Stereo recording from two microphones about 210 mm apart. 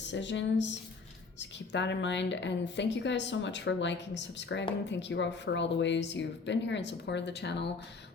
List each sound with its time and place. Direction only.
0.0 s a woman's voice: 60° left (ahead or behind)